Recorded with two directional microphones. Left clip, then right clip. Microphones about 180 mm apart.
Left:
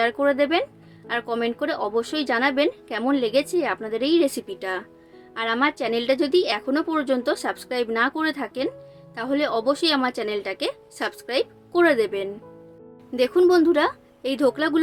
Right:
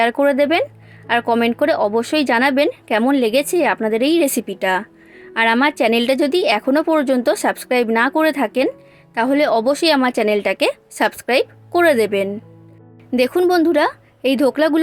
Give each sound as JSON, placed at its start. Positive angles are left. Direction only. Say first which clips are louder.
{"t": 0.0, "sound": "a woman's voice", "louder": "right 6 dB", "side_deg": -40}